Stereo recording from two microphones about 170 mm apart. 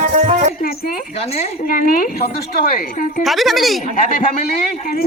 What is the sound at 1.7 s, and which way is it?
Speech, 55° left (ahead or behind).